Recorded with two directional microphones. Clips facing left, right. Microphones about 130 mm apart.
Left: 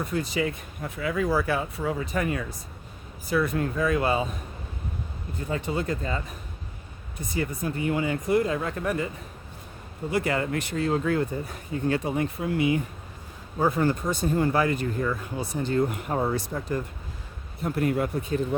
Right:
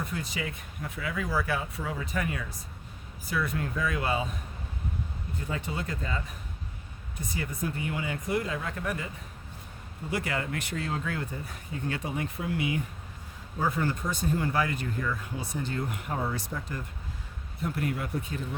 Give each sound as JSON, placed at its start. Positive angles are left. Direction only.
{"t": 0.0, "sound": "speech", "side_deg": 35}
{"t": 5.5, "sound": "speech", "side_deg": 35}
{"t": 10.1, "sound": "speech", "side_deg": 30}